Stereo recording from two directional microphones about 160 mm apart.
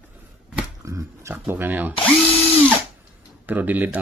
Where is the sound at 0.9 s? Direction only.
20° right (ahead or behind).